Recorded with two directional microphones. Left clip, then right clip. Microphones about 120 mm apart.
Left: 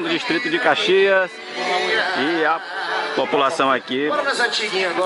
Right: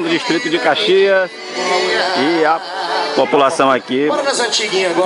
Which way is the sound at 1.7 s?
35° right (ahead or behind).